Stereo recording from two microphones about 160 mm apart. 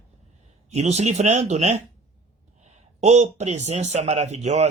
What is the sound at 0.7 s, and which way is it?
Speech, 45° right (ahead or behind).